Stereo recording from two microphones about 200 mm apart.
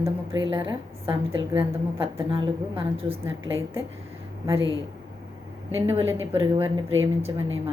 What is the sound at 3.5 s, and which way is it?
Speech, 15° right (ahead or behind).